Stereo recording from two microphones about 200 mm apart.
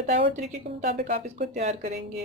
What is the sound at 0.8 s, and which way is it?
Speech, 50° right (ahead or behind).